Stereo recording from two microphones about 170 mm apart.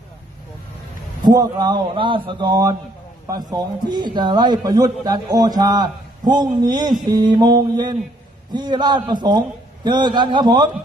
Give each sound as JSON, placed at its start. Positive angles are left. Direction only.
{"t": 1.2, "sound": "a man's voice", "side_deg": -25}